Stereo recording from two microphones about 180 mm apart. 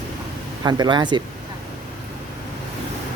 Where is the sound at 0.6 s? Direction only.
20° right (ahead or behind).